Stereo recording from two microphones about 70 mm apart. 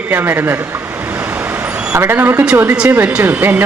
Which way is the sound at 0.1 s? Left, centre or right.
Right.